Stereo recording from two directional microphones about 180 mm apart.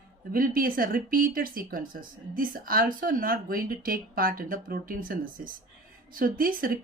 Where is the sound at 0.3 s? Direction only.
50° right (ahead or behind).